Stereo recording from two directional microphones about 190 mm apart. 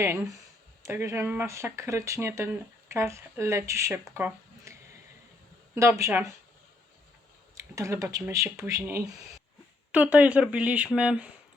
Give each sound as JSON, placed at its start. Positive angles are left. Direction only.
{"t": 0.0, "sound": "speech", "side_deg": -15}
{"t": 4.1, "sound": "a sound", "side_deg": -15}
{"t": 5.7, "sound": "speech", "side_deg": -15}
{"t": 7.5, "sound": "speech", "side_deg": -15}